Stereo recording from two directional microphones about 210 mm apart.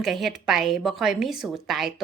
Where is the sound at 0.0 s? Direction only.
Centre (ahead or behind).